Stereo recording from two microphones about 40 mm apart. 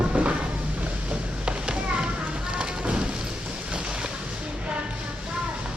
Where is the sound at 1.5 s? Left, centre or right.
Right.